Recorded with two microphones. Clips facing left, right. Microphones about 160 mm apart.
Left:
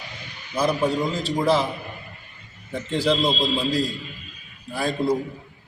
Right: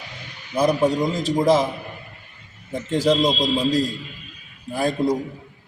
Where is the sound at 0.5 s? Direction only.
15° right (ahead or behind).